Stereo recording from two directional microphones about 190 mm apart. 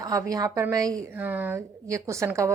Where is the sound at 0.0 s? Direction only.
20° right (ahead or behind).